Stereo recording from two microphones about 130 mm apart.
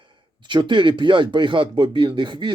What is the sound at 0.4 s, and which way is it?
Speech, 35° right (ahead or behind).